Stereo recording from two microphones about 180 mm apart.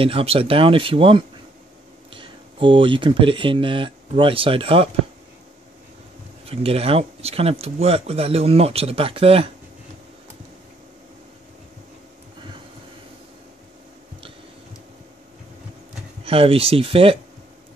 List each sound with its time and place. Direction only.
0.0 s speech: 30° right (ahead or behind)
6.5 s speech: 35° right (ahead or behind)
16.3 s speech: 30° right (ahead or behind)